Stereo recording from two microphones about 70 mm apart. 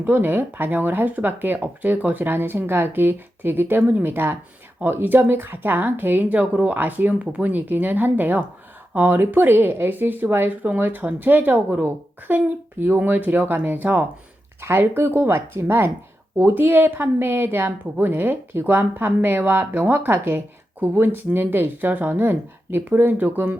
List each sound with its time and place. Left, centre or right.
0.0 s speech: right
14.6 s speech: right